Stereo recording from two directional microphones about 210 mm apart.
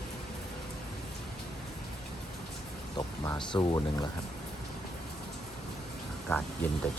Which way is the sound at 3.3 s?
20° left (ahead or behind).